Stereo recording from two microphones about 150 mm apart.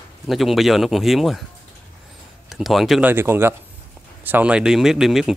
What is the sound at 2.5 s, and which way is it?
Speech, centre (ahead or behind).